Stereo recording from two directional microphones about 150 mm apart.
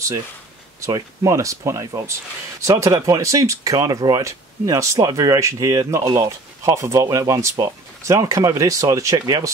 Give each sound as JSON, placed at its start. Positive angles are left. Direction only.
{"t": 0.7, "sound": "speech", "side_deg": -20}